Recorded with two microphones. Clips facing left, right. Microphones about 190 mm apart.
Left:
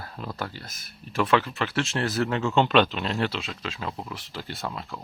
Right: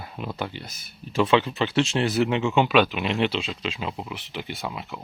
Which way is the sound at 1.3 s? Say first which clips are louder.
Right 3 dB; 25° right (ahead or behind).